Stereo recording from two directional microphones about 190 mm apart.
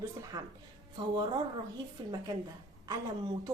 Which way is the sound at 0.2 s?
20° right (ahead or behind).